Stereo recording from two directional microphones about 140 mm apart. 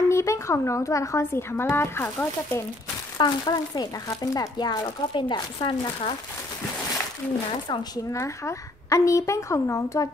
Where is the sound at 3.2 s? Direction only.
30° left (ahead or behind).